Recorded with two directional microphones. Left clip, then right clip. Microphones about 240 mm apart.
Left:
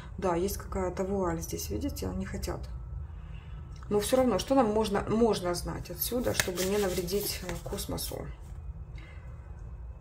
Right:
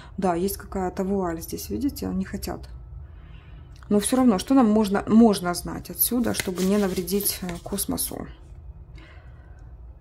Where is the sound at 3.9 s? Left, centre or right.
Right.